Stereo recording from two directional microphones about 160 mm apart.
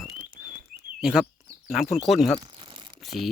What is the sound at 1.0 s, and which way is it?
Speech, 5° right (ahead or behind).